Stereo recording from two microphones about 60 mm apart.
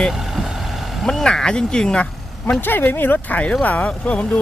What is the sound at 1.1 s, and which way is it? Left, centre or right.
Speech, centre.